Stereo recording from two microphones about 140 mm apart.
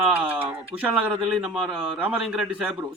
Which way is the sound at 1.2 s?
5° right (ahead or behind).